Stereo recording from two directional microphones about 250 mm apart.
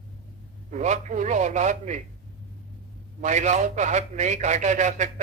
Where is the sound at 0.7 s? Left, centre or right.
Right.